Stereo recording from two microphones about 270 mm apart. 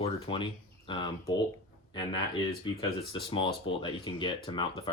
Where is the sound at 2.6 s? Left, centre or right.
Centre.